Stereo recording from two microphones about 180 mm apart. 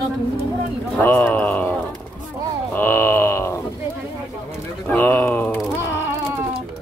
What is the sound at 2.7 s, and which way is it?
Wail, 10° left (ahead or behind).